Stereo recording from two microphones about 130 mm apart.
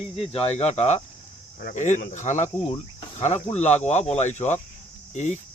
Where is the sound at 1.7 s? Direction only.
70° left (ahead or behind).